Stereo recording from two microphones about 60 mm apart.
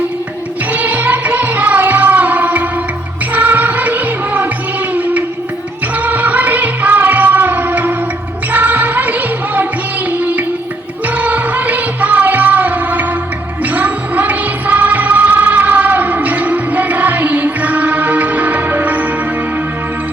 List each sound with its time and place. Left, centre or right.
0.7 s music: right
6.0 s music: right
11.0 s music: right